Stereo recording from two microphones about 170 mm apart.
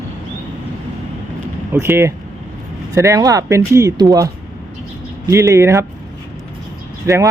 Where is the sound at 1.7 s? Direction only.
15° right (ahead or behind).